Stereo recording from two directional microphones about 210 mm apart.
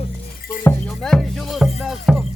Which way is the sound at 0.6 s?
10° left (ahead or behind).